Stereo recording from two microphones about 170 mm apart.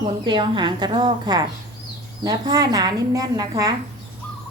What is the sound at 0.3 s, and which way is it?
A woman's voice, 25° right (ahead or behind).